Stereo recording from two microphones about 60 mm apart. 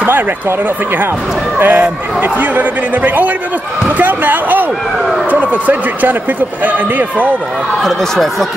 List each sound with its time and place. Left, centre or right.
0.0 s speech: right
7.8 s speech: centre